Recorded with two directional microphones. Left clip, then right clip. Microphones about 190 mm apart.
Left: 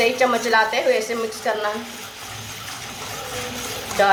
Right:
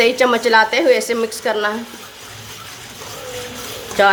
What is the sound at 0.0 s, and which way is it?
Speech, 60° right (ahead or behind).